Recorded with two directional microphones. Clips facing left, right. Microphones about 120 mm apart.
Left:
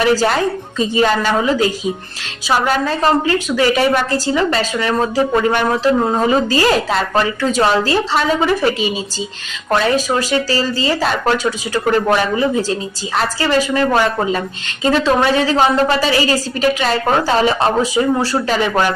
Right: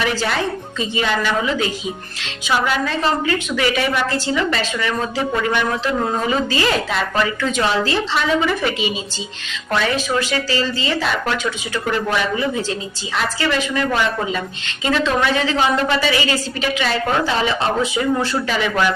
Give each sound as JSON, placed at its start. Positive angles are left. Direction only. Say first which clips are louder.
{"t": 0.0, "sound": "a woman's voice", "louder": "left 6 dB", "side_deg": 40}